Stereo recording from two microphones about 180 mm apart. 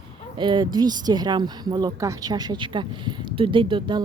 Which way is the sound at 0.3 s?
25° right (ahead or behind).